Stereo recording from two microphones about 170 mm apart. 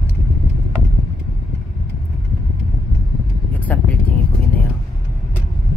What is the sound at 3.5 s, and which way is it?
Vehicle, 10° left (ahead or behind).